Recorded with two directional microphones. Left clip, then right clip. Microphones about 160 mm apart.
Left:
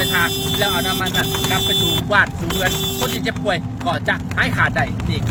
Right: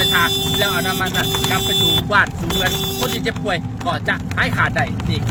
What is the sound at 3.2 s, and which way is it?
Speech, centre (ahead or behind).